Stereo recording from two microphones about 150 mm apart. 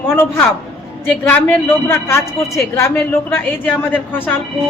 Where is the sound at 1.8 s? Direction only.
15° left (ahead or behind).